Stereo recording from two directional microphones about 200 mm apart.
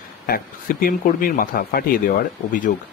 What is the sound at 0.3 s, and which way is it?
Speech, 45° left (ahead or behind).